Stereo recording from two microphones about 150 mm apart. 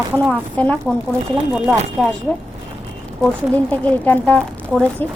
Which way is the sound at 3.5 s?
10° left (ahead or behind).